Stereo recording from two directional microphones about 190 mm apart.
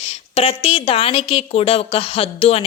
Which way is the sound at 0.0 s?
35° left (ahead or behind).